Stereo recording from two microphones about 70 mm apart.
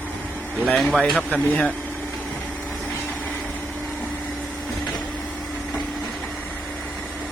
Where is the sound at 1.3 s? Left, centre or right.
Centre.